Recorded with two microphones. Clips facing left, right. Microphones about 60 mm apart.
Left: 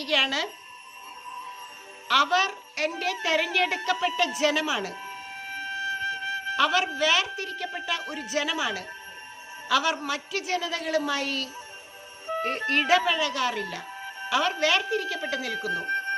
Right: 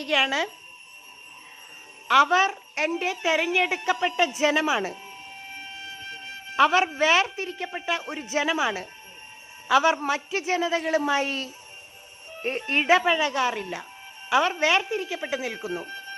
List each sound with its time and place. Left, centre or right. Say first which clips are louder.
0.0 s a woman's voice: right 2 dB; right
2.0 s a woman's voice: right 4 dB; right
6.6 s a woman's voice: right 5 dB; right
12.5 s a woman's voice: right 2 dB; right
15.7 s a sound: left 6 dB; left